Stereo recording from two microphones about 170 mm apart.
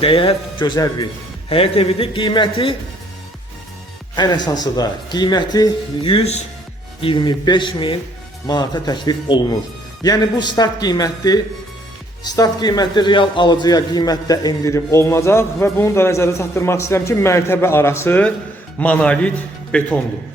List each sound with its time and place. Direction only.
0.0 s a man's voice: 35° left (ahead or behind)
4.1 s a man's voice: 25° left (ahead or behind); by 19.9 s 5° left (ahead or behind)